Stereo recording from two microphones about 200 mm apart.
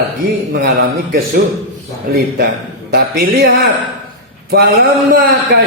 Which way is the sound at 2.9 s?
50° right (ahead or behind).